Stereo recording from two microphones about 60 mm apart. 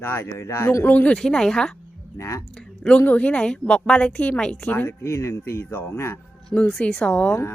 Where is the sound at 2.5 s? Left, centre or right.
Centre.